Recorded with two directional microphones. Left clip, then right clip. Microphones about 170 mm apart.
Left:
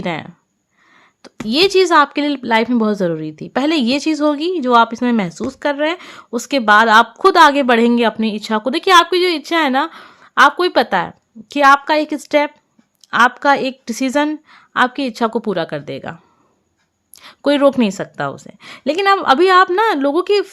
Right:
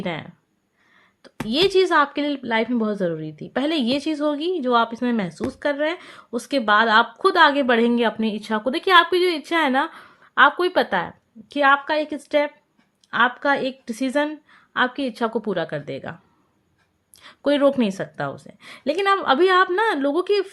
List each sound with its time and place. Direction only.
0.0 s speech: 45° left (ahead or behind)
1.5 s speech: 40° left (ahead or behind)
17.2 s speech: 40° left (ahead or behind)